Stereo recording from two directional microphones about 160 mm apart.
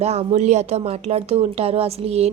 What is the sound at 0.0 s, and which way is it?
Speech, 40° right (ahead or behind).